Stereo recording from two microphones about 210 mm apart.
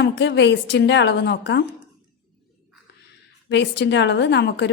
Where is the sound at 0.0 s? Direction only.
55° left (ahead or behind).